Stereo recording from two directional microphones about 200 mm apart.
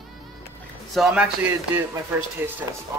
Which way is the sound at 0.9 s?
5° right (ahead or behind).